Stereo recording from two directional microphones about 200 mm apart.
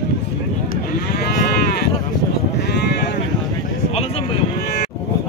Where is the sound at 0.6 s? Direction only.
55° left (ahead or behind).